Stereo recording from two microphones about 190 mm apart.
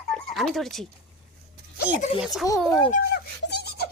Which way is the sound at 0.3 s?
Centre (ahead or behind).